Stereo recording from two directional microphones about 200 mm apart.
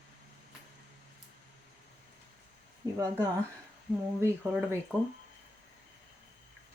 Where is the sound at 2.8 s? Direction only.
15° right (ahead or behind).